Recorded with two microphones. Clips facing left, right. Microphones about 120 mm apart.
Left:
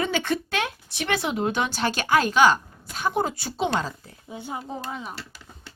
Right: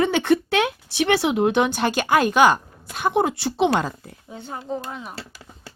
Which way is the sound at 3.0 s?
65° right (ahead or behind).